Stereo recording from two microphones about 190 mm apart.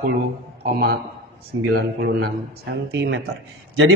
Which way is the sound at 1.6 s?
55° right (ahead or behind).